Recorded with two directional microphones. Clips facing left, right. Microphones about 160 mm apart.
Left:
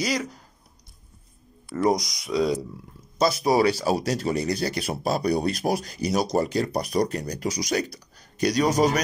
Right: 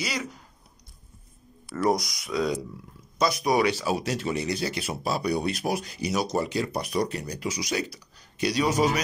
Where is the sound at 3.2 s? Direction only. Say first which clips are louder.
Left 3 dB; 30° left (ahead or behind).